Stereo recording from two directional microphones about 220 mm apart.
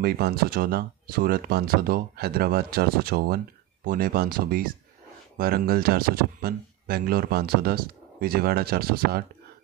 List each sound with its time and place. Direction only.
0.0 s speech: 45° right (ahead or behind)